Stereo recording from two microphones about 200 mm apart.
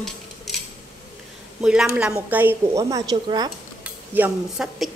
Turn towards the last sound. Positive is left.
turn(degrees=-5)  # may be behind; listen again after turning